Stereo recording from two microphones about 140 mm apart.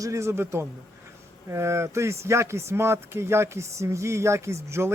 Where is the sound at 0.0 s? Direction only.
20° right (ahead or behind).